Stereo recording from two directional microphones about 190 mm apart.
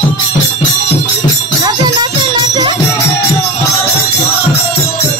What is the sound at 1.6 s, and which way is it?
Music, 20° right (ahead or behind).